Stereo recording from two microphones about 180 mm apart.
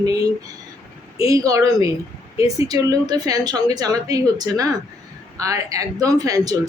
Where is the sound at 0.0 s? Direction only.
20° right (ahead or behind).